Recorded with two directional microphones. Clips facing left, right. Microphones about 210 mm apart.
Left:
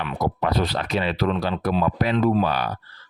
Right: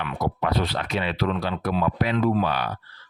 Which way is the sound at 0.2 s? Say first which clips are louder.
Left 2 dB; 40° left (ahead or behind).